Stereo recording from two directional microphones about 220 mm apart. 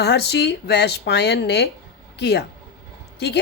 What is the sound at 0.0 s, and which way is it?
A woman's voice, 50° left (ahead or behind).